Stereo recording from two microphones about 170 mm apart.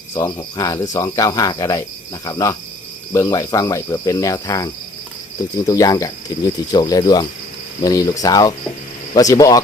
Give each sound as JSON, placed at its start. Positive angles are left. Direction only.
{"t": 0.1, "sound": "speech", "side_deg": 20}